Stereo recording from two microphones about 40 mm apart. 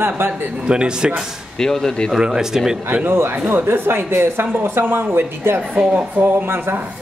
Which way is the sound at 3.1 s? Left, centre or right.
Right.